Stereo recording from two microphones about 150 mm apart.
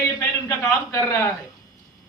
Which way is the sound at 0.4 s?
20° left (ahead or behind).